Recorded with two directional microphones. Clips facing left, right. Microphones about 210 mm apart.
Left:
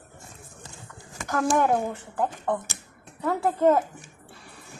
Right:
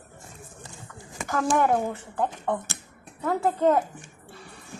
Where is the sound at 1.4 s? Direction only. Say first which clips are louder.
Even; 5° left (ahead or behind).